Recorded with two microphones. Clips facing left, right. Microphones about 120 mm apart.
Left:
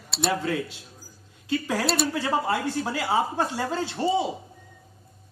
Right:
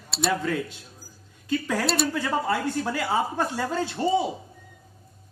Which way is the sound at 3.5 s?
30° left (ahead or behind).